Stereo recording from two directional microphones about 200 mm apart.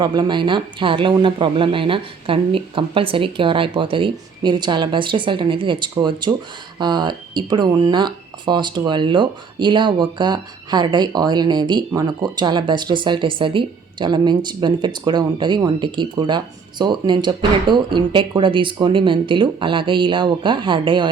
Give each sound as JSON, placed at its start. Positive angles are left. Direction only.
{"t": 0.0, "sound": "speech", "side_deg": -20}